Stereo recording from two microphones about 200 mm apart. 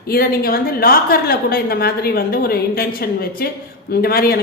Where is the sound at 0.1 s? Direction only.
50° left (ahead or behind).